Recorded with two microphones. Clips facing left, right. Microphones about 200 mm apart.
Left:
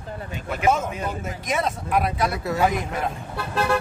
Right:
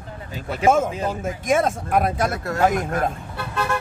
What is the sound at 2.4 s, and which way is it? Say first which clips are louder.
Speech: right 2 dB; centre (ahead or behind).